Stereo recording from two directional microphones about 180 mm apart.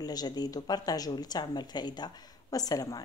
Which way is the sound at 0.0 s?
20° left (ahead or behind).